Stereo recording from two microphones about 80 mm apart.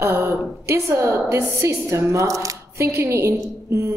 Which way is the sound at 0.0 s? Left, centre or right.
Right.